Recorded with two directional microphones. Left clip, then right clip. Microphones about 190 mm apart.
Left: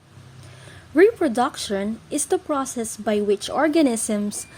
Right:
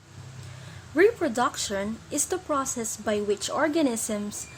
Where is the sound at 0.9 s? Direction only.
30° left (ahead or behind).